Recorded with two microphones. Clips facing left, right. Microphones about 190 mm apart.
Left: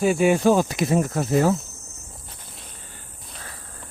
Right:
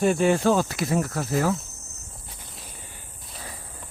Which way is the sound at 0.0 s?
10° left (ahead or behind).